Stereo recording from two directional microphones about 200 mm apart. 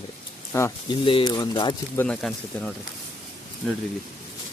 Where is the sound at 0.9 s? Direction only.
25° left (ahead or behind).